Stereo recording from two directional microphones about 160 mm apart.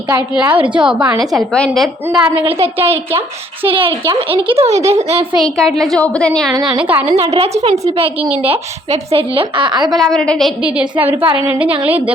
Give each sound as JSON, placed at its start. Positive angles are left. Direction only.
{"t": 0.3, "sound": "a woman's voice", "side_deg": -10}
{"t": 3.2, "sound": "a woman's voice", "side_deg": -35}
{"t": 5.4, "sound": "a woman's voice", "side_deg": 0}
{"t": 6.7, "sound": "a woman's voice", "side_deg": -10}
{"t": 7.1, "sound": "a woman's voice", "side_deg": -35}
{"t": 10.0, "sound": "a woman's voice", "side_deg": 5}